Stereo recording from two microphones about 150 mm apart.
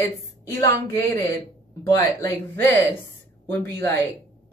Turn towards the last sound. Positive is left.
turn(degrees=10)  # may be behind; listen again after turning